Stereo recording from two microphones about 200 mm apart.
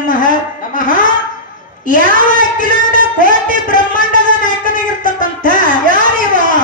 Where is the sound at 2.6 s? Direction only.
40° left (ahead or behind).